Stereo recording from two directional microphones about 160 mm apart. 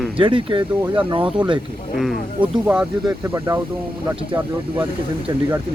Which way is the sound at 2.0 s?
5° right (ahead or behind).